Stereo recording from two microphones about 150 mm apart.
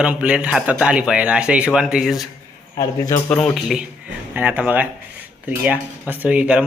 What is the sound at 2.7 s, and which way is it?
Speech, 25° left (ahead or behind).